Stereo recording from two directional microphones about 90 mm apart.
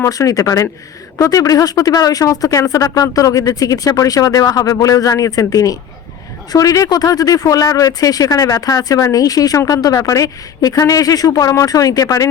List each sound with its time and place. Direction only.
0.0 s speech: 40° left (ahead or behind)